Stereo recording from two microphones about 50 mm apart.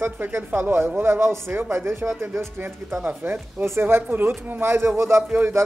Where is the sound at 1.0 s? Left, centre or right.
Right.